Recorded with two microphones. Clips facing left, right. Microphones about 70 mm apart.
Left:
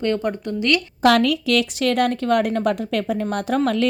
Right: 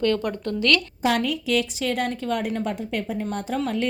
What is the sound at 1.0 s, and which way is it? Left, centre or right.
A woman's voice, left.